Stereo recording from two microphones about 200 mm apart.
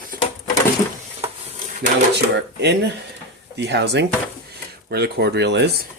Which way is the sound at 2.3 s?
60° right (ahead or behind).